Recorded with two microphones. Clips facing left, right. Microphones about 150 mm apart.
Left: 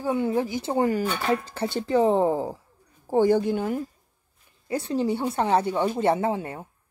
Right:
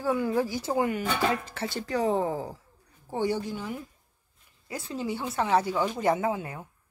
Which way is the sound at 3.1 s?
45° left (ahead or behind).